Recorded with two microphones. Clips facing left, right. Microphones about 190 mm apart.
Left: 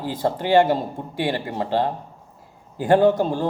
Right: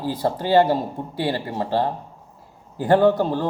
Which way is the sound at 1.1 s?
15° left (ahead or behind).